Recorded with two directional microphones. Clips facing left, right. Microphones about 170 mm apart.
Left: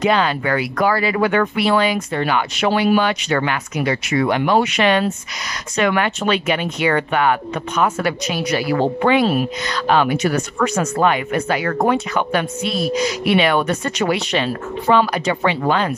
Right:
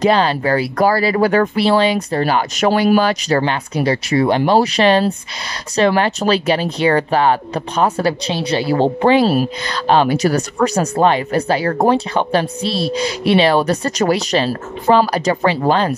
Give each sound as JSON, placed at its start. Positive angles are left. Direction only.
{"t": 0.0, "sound": "speech", "side_deg": -35}